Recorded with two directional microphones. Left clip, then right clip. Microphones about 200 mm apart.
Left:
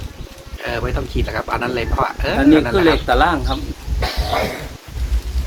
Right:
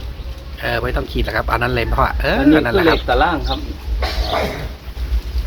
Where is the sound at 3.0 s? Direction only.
20° left (ahead or behind).